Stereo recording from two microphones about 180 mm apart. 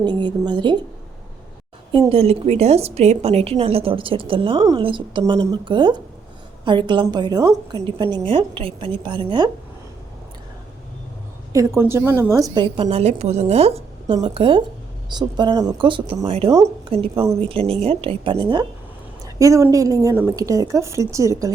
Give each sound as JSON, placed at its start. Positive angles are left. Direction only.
{"t": 0.0, "sound": "a woman's voice", "side_deg": -25}
{"t": 2.0, "sound": "a woman's voice", "side_deg": -35}
{"t": 11.5, "sound": "a woman's voice", "side_deg": -15}